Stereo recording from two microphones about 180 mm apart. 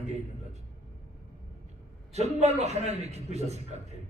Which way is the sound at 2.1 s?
35° right (ahead or behind).